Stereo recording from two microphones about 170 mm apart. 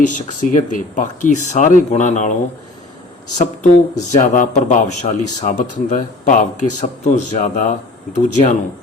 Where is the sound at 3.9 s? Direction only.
45° left (ahead or behind).